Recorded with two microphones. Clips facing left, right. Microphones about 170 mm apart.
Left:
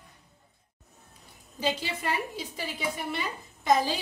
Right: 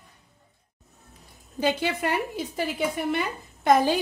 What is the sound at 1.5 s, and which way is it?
A woman's voice, 60° right (ahead or behind).